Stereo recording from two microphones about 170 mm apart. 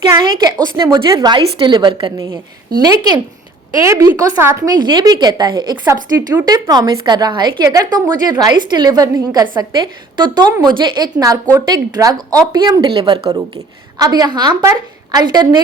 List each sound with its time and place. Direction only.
0.1 s a woman's voice: 25° right (ahead or behind)